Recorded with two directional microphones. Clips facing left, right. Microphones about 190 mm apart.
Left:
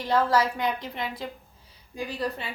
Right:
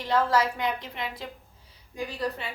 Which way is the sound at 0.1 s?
35° left (ahead or behind).